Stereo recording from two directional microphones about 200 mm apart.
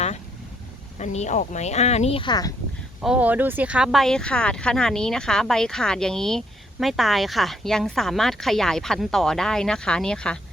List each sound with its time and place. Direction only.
0.9 s speech: 35° left (ahead or behind)
3.0 s speech: 5° right (ahead or behind)